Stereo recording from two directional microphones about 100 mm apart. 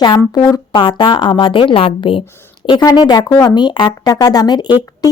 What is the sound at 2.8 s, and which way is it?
A woman's voice, 40° left (ahead or behind).